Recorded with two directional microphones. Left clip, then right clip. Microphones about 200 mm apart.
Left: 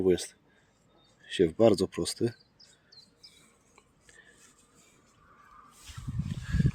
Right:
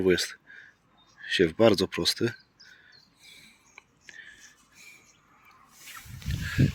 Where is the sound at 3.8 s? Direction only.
10° left (ahead or behind).